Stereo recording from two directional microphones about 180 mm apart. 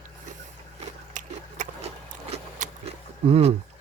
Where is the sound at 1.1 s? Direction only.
45° right (ahead or behind).